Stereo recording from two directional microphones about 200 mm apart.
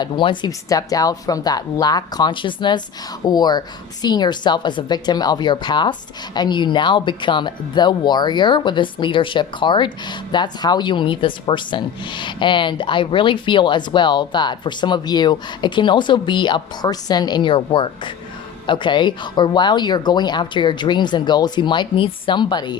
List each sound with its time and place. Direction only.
0.0 s a woman's voice: 20° left (ahead or behind)